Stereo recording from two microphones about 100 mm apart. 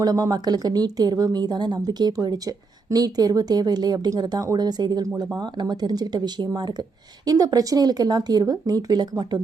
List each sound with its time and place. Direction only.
0.0 s speech: 40° right (ahead or behind)